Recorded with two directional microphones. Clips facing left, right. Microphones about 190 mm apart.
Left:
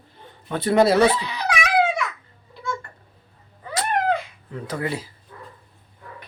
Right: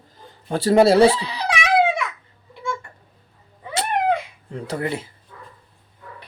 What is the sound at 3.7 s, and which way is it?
Cat, 25° right (ahead or behind).